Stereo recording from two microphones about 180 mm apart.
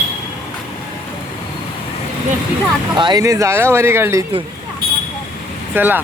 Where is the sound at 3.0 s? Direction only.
20° right (ahead or behind).